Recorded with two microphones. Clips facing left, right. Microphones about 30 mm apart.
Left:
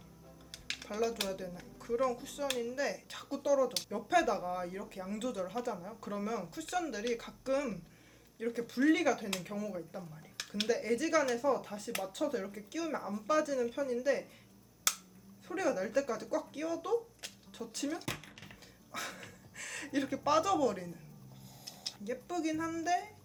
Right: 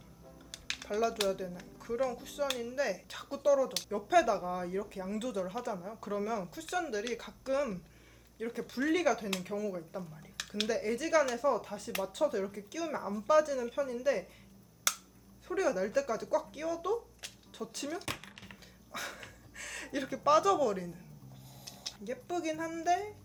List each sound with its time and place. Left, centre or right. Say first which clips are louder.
0.9 s speech: right 4 dB; centre
1.3 s speech: right 4 dB; centre
15.4 s speech: right 2 dB; centre
18.0 s a sound: right 1 dB; right
18.6 s a sound: right 1 dB; centre
20.2 s speech: right 4 dB; centre